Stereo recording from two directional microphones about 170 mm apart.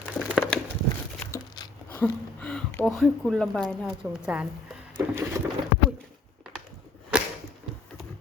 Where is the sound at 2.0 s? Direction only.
5° left (ahead or behind).